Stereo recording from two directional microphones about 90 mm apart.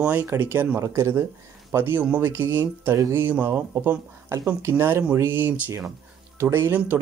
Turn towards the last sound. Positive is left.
turn(degrees=-25)  # may be behind; listen again after turning